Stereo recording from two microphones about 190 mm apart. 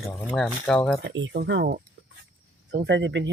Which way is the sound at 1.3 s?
65° right (ahead or behind).